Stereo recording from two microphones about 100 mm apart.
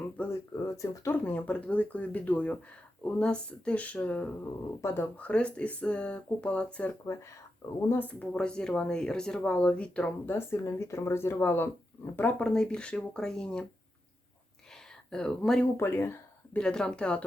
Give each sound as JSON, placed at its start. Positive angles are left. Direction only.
{"t": 0.2, "sound": "a sound", "side_deg": 15}
{"t": 0.5, "sound": "speech", "side_deg": 30}
{"t": 1.1, "sound": "speech", "side_deg": 15}
{"t": 7.0, "sound": "speech", "side_deg": 25}
{"t": 10.3, "sound": "speech", "side_deg": 30}
{"t": 15.1, "sound": "speech", "side_deg": 10}
{"t": 15.8, "sound": "speech", "side_deg": 20}
{"t": 16.6, "sound": "speech", "side_deg": 10}